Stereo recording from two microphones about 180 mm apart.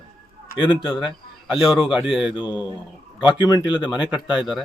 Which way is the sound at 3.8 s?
5° right (ahead or behind).